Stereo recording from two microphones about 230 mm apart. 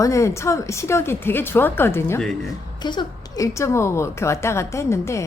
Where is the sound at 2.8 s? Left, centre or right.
Centre.